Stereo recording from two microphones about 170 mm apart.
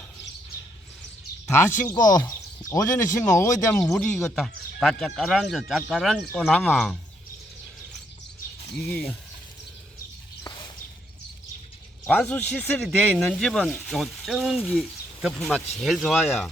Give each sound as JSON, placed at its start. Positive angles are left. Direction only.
{"t": 1.9, "sound": "speech", "side_deg": 25}
{"t": 3.9, "sound": "speech", "side_deg": 5}
{"t": 8.8, "sound": "speech", "side_deg": 10}
{"t": 12.0, "sound": "speech", "side_deg": 5}